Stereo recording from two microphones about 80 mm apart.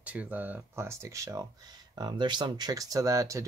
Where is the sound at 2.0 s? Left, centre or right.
Right.